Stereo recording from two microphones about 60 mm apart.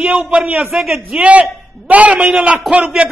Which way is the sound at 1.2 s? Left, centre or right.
Right.